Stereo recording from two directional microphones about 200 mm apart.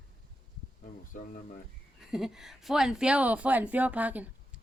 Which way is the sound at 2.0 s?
Centre (ahead or behind).